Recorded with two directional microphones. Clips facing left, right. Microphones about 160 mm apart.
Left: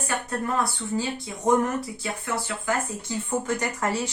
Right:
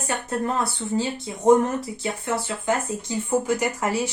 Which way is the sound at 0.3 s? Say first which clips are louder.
Right 3 dB; 25° right (ahead or behind).